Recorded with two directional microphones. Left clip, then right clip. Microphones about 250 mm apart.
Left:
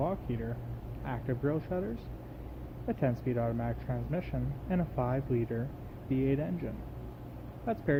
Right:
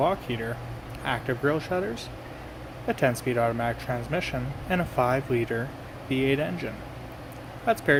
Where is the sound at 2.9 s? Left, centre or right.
Centre.